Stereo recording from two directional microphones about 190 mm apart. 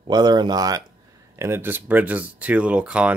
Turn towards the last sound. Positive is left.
turn(degrees=-5)  # may be behind; listen again after turning